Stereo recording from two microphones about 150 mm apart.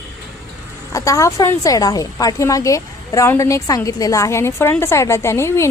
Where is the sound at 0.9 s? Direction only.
20° left (ahead or behind).